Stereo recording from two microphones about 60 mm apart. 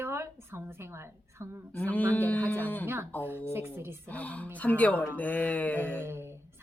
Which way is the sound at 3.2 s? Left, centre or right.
Right.